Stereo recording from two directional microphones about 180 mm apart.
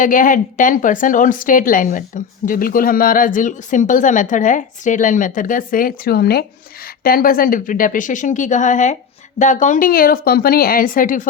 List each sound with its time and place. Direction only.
0.0 s a woman's voice: 50° left (ahead or behind)